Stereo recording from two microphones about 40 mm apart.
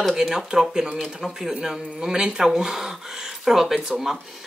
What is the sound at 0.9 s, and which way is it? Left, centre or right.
Speech, centre.